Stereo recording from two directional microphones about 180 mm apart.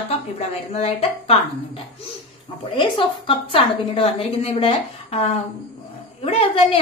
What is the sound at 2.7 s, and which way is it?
A woman's voice, 30° left (ahead or behind).